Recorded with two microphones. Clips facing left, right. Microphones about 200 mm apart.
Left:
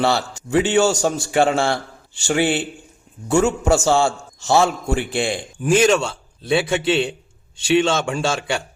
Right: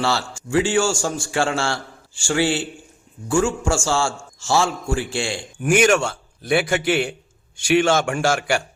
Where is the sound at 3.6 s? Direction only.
20° left (ahead or behind).